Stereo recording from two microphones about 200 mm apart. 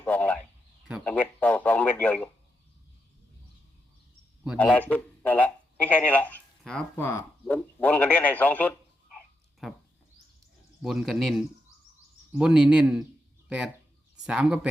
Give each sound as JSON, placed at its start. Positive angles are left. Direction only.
{"t": 0.0, "sound": "a sound", "side_deg": 10}
{"t": 1.0, "sound": "a man's voice", "side_deg": 5}
{"t": 4.5, "sound": "speech", "side_deg": 5}
{"t": 9.6, "sound": "bird", "side_deg": 0}
{"t": 10.8, "sound": "speech", "side_deg": 0}
{"t": 14.3, "sound": "speech", "side_deg": -5}